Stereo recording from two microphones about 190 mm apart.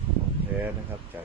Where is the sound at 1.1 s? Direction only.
10° right (ahead or behind).